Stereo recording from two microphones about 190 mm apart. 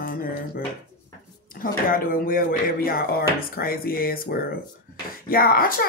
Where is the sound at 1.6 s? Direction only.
50° left (ahead or behind).